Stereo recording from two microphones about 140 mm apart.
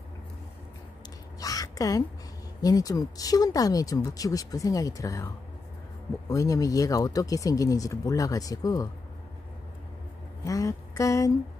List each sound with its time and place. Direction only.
1.4 s a sound: 25° left (ahead or behind)
2.6 s speech: 25° left (ahead or behind)
10.4 s speech: 25° left (ahead or behind)